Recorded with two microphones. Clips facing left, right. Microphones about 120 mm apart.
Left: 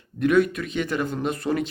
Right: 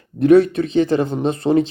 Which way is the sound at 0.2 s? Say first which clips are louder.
Right 8 dB; 35° right (ahead or behind).